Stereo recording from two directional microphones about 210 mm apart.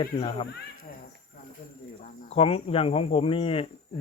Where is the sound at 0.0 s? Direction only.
25° left (ahead or behind).